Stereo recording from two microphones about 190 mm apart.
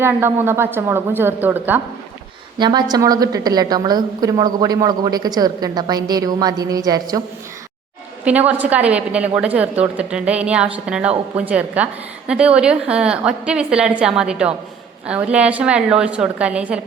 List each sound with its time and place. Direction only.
0.0 s a woman's voice: 10° right (ahead or behind)
2.6 s a woman's voice: 25° right (ahead or behind)
8.2 s a woman's voice: 5° right (ahead or behind)